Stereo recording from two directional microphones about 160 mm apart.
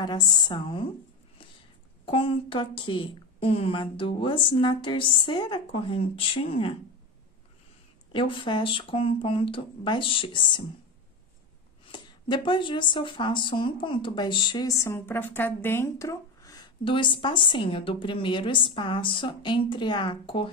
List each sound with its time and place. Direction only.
0.0 s a woman's voice: 25° left (ahead or behind)
2.0 s speech: 35° left (ahead or behind)
8.1 s speech: 30° left (ahead or behind)
11.8 s speech: 30° left (ahead or behind)